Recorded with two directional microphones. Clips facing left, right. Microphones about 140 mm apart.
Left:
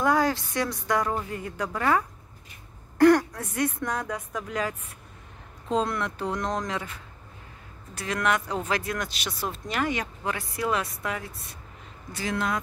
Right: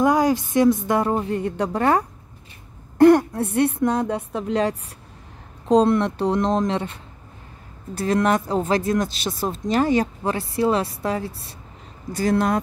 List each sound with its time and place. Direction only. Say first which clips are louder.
0.0 s a woman's voice: right 5 dB; 20° right (ahead or behind); by 12.6 s 40° right (ahead or behind)